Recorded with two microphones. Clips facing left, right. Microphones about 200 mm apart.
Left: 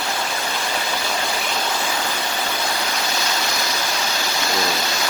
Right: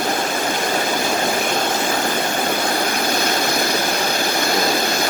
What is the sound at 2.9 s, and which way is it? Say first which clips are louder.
Vehicle: right 5 dB; 55° right (ahead or behind).